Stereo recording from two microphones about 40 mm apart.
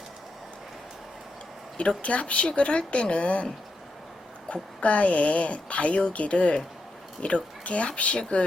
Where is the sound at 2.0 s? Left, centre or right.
Left.